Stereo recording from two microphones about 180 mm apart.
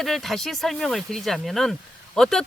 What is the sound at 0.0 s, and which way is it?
Speech, centre (ahead or behind).